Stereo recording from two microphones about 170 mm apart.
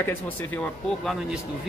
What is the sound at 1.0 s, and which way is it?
Speech, centre (ahead or behind).